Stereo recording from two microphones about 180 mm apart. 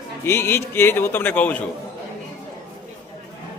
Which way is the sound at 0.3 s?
15° left (ahead or behind).